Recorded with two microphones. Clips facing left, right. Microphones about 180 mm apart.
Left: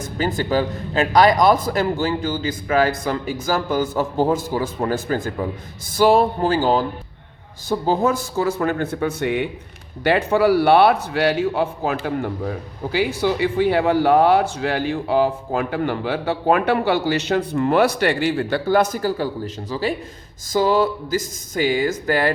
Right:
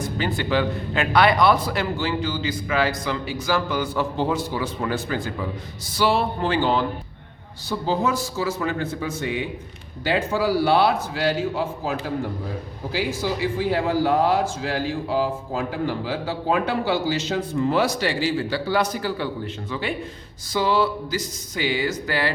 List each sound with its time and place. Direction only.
0.0 s a man's voice: 45° left (ahead or behind)
6.0 s music: 45° left (ahead or behind)
7.7 s a man's voice: 50° left (ahead or behind)
19.7 s music: 40° left (ahead or behind)
20.5 s a man's voice: 45° left (ahead or behind)